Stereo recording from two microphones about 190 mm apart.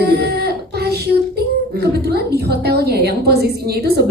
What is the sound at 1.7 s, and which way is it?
A woman's voice, 55° right (ahead or behind).